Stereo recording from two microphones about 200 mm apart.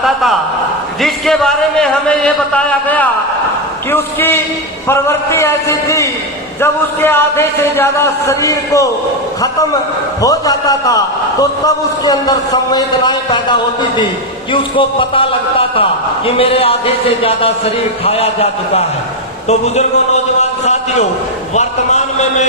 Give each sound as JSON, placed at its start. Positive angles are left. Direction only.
{"t": 0.0, "sound": "a man's voice", "side_deg": 0}
{"t": 10.2, "sound": "a man's voice", "side_deg": 15}
{"t": 14.5, "sound": "a man's voice", "side_deg": 25}